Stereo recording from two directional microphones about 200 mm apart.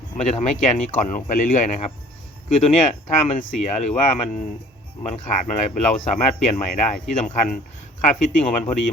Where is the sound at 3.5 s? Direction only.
35° left (ahead or behind).